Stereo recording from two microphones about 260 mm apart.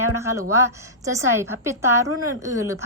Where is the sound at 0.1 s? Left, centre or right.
Centre.